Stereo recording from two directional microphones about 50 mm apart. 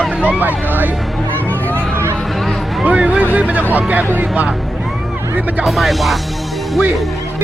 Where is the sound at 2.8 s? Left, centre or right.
Right.